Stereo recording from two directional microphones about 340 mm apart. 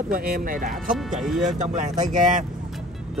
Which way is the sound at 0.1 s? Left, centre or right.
Right.